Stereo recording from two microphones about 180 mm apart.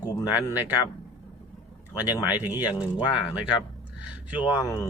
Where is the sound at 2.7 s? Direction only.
25° left (ahead or behind).